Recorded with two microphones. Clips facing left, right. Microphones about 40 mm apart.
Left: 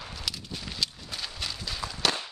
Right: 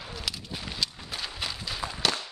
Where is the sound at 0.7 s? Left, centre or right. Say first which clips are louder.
Even; centre.